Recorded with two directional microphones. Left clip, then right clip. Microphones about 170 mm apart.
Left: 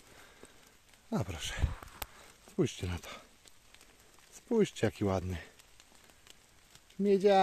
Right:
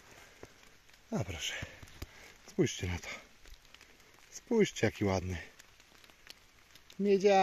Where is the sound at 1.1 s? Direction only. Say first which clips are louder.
Even; 20° left (ahead or behind).